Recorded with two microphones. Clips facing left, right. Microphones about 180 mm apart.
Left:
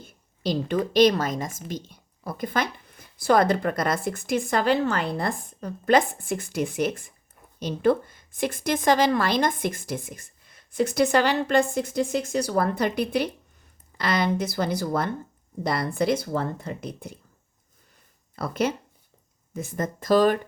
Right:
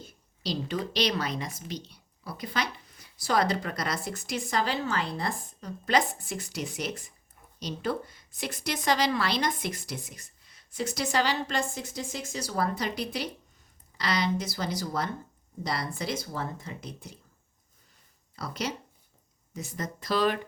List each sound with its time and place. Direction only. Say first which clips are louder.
0.0 s a woman's voice: left 7 dB; 55° left (ahead or behind)
18.3 s a woman's voice: left 8 dB; 55° left (ahead or behind)